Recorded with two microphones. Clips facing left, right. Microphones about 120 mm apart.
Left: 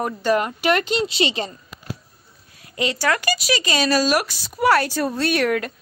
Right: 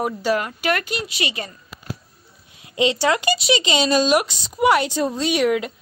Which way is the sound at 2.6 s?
25° right (ahead or behind).